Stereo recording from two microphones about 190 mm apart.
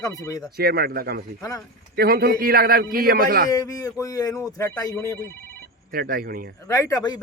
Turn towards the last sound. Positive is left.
turn(degrees=20)  # may be behind; listen again after turning